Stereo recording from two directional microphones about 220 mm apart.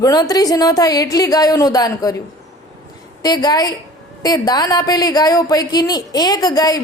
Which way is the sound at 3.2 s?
20° left (ahead or behind).